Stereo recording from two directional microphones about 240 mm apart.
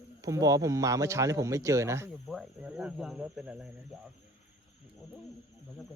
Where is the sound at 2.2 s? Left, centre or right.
Centre.